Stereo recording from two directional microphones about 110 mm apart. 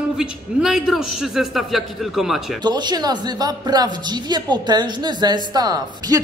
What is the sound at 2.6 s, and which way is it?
A woman's voice, 40° right (ahead or behind).